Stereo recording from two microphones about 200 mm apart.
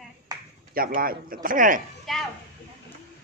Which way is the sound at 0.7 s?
45° right (ahead or behind).